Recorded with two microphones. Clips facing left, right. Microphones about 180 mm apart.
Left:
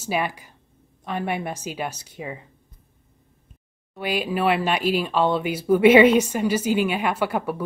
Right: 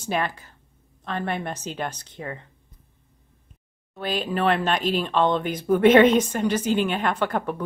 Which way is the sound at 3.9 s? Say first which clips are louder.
Left 1 dB; 10° left (ahead or behind).